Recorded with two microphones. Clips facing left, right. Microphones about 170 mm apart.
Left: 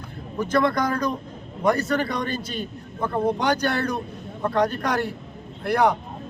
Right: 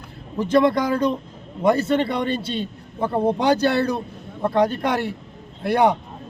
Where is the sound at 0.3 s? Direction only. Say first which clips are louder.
Right 4 dB; 25° right (ahead or behind).